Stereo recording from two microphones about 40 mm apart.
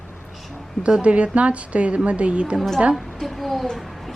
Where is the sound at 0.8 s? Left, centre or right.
Right.